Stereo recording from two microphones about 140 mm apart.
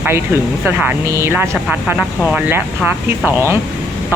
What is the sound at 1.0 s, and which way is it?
Speech, 20° right (ahead or behind).